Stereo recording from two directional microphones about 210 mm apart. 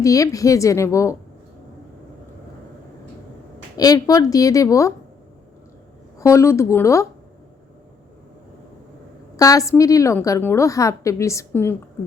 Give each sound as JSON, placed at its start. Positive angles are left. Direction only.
{"t": 0.0, "sound": "a woman's voice", "side_deg": 15}
{"t": 3.8, "sound": "a woman's voice", "side_deg": 15}
{"t": 6.1, "sound": "a woman's voice", "side_deg": 15}
{"t": 9.3, "sound": "a woman's voice", "side_deg": 15}